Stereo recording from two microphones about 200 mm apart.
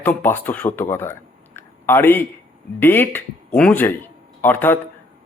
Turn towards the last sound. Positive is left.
turn(degrees=10)  # may be behind; listen again after turning